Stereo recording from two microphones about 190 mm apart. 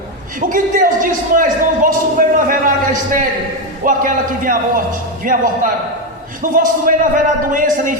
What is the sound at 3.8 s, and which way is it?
A man's voice, 45° right (ahead or behind).